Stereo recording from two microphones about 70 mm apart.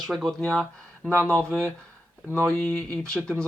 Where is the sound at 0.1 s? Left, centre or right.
Centre.